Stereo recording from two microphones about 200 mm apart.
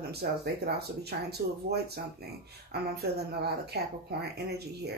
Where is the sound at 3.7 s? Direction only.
55° right (ahead or behind).